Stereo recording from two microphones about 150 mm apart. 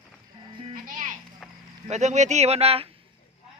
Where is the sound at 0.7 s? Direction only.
60° right (ahead or behind).